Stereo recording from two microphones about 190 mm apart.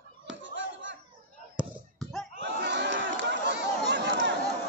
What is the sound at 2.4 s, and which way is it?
Chatter, 70° right (ahead or behind).